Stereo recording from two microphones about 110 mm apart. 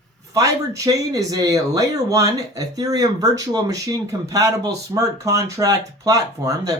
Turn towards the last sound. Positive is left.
turn(degrees=-30)  # may be behind; listen again after turning